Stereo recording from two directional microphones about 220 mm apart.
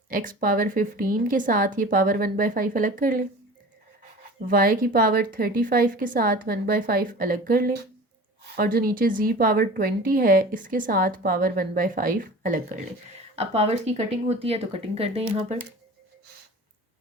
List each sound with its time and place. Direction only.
0.1 s a woman's voice: 40° right (ahead or behind)
4.4 s a woman's voice: 40° right (ahead or behind)